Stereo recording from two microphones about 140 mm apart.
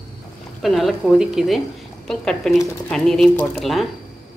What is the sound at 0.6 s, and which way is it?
A woman's voice, centre (ahead or behind).